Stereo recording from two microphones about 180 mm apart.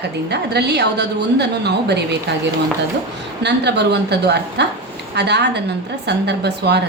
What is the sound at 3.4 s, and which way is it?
A woman's voice, 70° right (ahead or behind).